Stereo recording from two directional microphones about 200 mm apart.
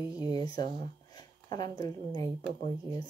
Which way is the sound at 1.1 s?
20° left (ahead or behind).